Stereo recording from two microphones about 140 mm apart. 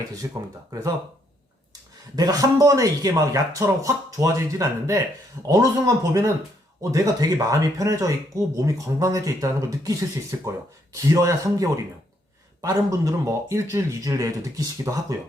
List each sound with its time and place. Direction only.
0.2 s speech: 20° right (ahead or behind)
2.1 s speech: 25° right (ahead or behind)